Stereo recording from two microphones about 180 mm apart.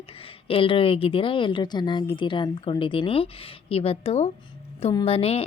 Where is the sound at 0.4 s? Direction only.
30° left (ahead or behind).